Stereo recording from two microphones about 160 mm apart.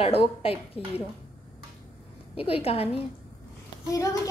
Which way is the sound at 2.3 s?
40° left (ahead or behind).